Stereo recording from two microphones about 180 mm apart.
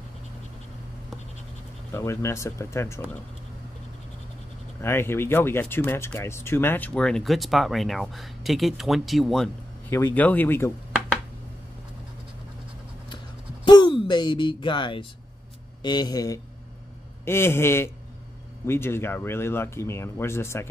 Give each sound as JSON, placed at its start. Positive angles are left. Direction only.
{"t": 1.9, "sound": "speech", "side_deg": 15}
{"t": 4.8, "sound": "speech", "side_deg": 15}
{"t": 9.8, "sound": "speech", "side_deg": 15}
{"t": 13.7, "sound": "a sound", "side_deg": 25}
{"t": 15.8, "sound": "speech", "side_deg": 25}